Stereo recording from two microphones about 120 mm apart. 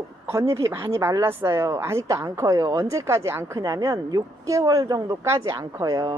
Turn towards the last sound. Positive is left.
turn(degrees=-30)  # may be behind; listen again after turning